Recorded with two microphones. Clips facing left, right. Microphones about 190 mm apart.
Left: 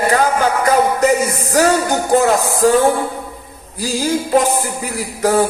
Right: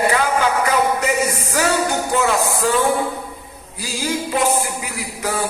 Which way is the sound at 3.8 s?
40° left (ahead or behind).